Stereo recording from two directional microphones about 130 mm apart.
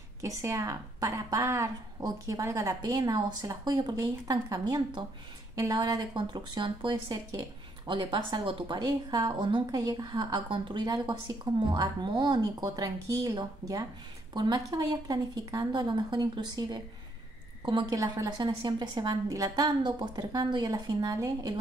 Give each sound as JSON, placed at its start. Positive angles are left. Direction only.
{"t": 0.2, "sound": "a woman's voice", "side_deg": -25}
{"t": 17.9, "sound": "speech", "side_deg": -25}